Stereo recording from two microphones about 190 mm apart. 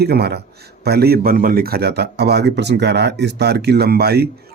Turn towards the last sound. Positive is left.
turn(degrees=-60)  # may be behind; listen again after turning